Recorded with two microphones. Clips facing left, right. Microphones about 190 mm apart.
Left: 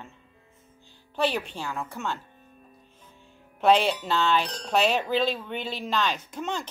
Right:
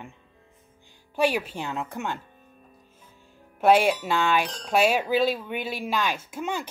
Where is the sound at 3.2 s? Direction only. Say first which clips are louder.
Right 1 dB; 10° right (ahead or behind).